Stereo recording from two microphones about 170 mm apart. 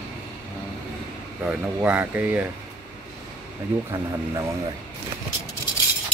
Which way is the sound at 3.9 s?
20° right (ahead or behind).